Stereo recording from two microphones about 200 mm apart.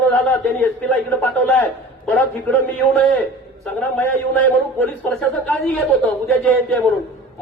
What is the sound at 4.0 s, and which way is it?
A man's voice, 10° left (ahead or behind).